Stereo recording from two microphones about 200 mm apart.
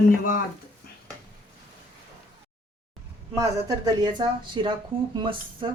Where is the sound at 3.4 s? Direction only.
15° right (ahead or behind).